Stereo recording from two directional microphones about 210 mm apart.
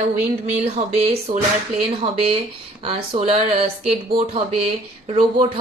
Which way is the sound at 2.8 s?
30° right (ahead or behind).